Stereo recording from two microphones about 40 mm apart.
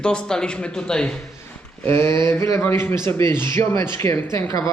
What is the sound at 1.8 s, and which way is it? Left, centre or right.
Speech, left.